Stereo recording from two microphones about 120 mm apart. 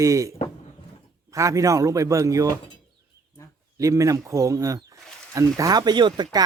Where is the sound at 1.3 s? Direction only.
25° right (ahead or behind).